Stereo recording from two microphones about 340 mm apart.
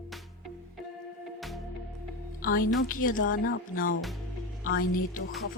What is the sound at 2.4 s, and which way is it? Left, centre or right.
Speech, left.